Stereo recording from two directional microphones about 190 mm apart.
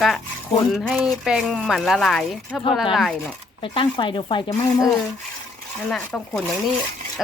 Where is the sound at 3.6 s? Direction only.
25° left (ahead or behind).